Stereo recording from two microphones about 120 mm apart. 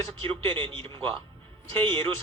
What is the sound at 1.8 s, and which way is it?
Speech, 45° right (ahead or behind).